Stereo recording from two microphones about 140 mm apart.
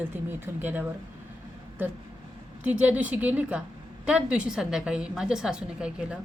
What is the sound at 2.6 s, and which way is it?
A woman's voice, 10° right (ahead or behind).